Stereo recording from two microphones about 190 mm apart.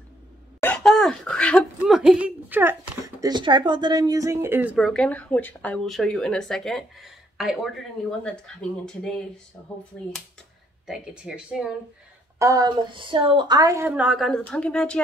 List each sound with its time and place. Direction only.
0.6 s a sound: 5° left (ahead or behind)
3.2 s speech: 20° right (ahead or behind)
4.7 s speech: 5° left (ahead or behind)
10.9 s speech: 5° right (ahead or behind)
12.4 s a woman's voice: 20° right (ahead or behind); by 15.0 s 5° left (ahead or behind)